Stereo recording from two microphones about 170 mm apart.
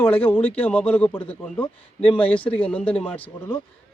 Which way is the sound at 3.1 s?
30° left (ahead or behind).